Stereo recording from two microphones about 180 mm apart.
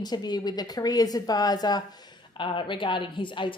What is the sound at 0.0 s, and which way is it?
Speech, 20° left (ahead or behind).